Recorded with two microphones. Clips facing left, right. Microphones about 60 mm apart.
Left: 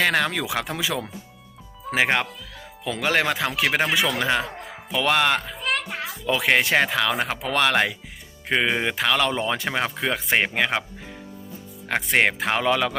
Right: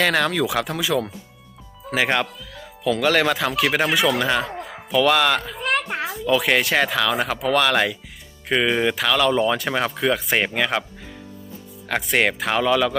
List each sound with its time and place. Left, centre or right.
0.0 s speech: centre
11.9 s speech: left